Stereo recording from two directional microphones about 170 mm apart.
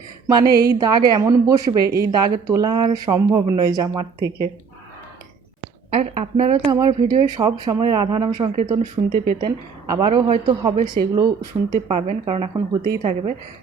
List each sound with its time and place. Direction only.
0.3 s speech: 25° right (ahead or behind)
5.9 s speech: 40° right (ahead or behind)
13.0 s speech: 35° right (ahead or behind)